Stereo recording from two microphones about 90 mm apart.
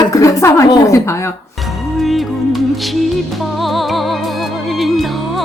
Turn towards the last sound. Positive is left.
turn(degrees=0)  # may be behind; listen again after turning